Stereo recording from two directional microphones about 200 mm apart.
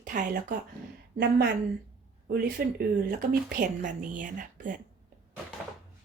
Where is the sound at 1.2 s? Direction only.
55° right (ahead or behind).